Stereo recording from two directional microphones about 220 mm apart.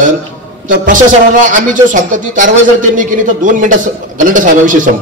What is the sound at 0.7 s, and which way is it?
A man's voice, 40° right (ahead or behind).